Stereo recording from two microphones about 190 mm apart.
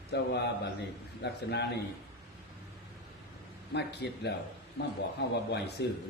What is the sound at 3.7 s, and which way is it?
Speech, 60° left (ahead or behind).